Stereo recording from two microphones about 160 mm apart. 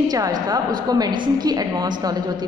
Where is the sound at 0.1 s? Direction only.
25° right (ahead or behind).